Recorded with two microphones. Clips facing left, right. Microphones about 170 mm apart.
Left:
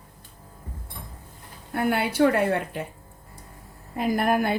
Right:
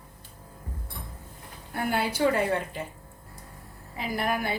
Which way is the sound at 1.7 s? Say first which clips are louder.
Left 4 dB; 65° left (ahead or behind).